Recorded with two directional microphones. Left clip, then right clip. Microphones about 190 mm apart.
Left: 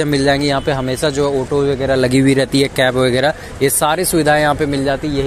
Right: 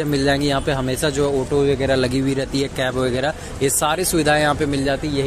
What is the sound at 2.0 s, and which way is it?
Speech, 30° left (ahead or behind).